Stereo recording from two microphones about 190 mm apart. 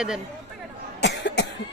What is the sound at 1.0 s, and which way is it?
Cough, 65° left (ahead or behind).